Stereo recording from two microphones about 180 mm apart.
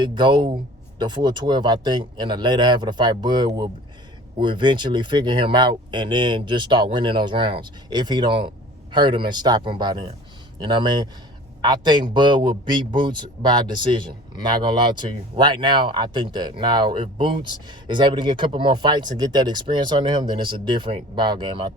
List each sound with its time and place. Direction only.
0.0 s speech: 25° right (ahead or behind)